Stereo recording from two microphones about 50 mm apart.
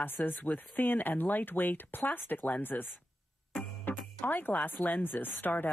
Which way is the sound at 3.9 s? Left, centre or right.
Left.